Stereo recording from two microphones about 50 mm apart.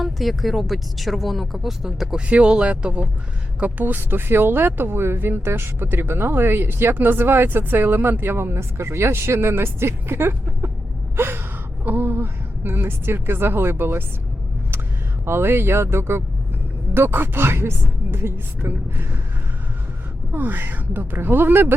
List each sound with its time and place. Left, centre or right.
0.0 s speech: centre
2.2 s speech: right
3.6 s speech: right
11.2 s gasp: right
11.9 s a woman's voice: right
15.2 s speech: right
16.9 s speech: right
20.3 s speech: right